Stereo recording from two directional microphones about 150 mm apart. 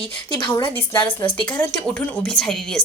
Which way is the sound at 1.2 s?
35° left (ahead or behind).